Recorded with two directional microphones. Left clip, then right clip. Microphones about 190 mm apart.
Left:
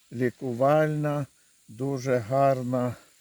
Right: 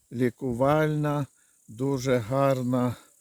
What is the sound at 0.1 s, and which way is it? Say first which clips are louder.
Speech: right 1 dB; 45° right (ahead or behind).